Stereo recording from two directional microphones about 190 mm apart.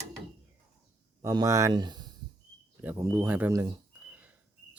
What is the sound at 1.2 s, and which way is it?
Speech, 20° right (ahead or behind).